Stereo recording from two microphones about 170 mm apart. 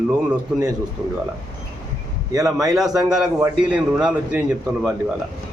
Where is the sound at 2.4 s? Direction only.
Centre (ahead or behind).